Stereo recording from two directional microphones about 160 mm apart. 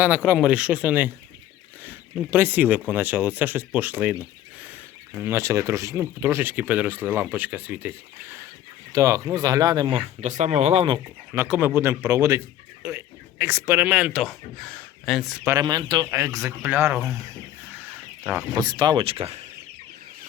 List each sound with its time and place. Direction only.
0.3 s speech: 5° right (ahead or behind); by 10.0 s 25° right (ahead or behind)
10.2 s speech: 45° right (ahead or behind)
11.3 s speech: 15° right (ahead or behind)
15.4 s speech: 25° right (ahead or behind)
17.7 s a sound: 10° right (ahead or behind)
18.7 s speech: 25° right (ahead or behind)